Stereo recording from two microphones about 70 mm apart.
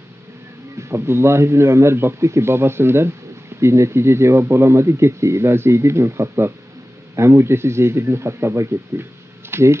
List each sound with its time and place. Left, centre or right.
0.7 s a man's voice: right